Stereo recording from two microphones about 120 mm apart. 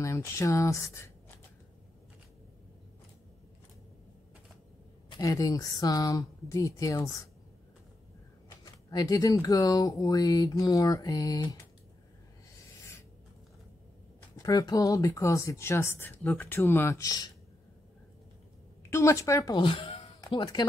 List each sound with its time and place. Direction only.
0.0 s speech: 25° left (ahead or behind)
5.1 s speech: 30° left (ahead or behind)
8.5 s speech: 30° left (ahead or behind)
14.4 s speech: 30° left (ahead or behind)
18.8 s a woman's voice: 25° left (ahead or behind)
19.5 s speech: 45° left (ahead or behind)
20.3 s speech: 35° left (ahead or behind)